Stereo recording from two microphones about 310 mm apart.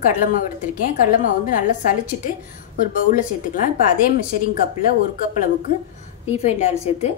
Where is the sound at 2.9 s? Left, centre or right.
Left.